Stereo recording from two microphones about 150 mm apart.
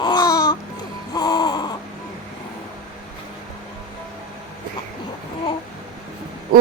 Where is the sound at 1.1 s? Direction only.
25° left (ahead or behind).